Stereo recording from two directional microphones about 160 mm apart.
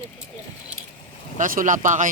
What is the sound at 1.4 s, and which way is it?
Speech, 55° right (ahead or behind).